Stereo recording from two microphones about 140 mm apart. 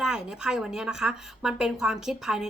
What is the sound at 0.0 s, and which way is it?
Speech, 5° right (ahead or behind).